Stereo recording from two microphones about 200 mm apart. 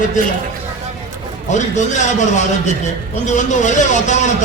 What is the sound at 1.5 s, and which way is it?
Speech, 35° left (ahead or behind).